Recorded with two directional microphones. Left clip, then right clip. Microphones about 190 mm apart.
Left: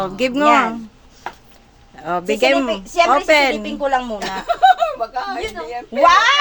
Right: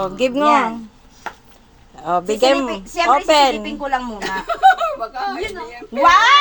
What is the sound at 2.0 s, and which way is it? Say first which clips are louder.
A woman's voice: right 1 dB; 10° left (ahead or behind).